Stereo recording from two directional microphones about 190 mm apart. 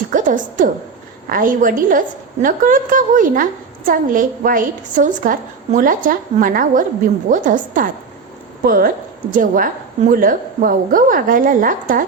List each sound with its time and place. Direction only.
0.1 s a woman's voice: 45° right (ahead or behind)